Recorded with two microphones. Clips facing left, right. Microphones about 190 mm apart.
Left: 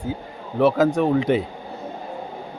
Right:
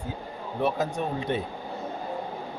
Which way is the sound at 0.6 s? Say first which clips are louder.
Left 10 dB; 90° left.